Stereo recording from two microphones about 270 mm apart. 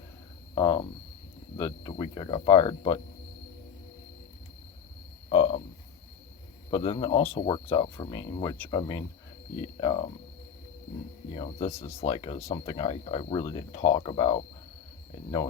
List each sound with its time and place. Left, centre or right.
0.5 s speech: centre
5.3 s speech: centre
6.7 s speech: centre
11.3 s speech: centre